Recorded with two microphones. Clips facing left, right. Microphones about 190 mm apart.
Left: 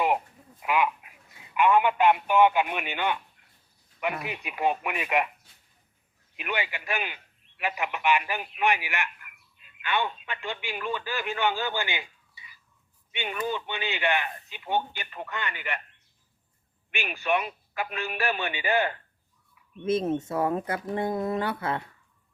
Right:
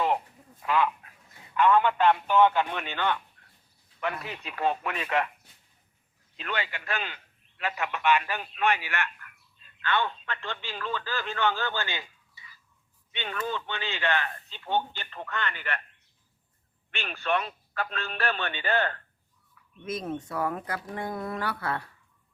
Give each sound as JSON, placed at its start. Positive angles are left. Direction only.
{"t": 0.6, "sound": "duck", "side_deg": 15}
{"t": 1.5, "sound": "speech", "side_deg": 15}
{"t": 6.3, "sound": "a man's voice", "side_deg": 15}
{"t": 16.9, "sound": "speech", "side_deg": 10}
{"t": 19.8, "sound": "speech", "side_deg": 25}